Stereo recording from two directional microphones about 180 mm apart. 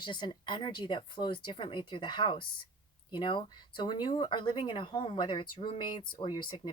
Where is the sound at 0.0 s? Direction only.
25° left (ahead or behind).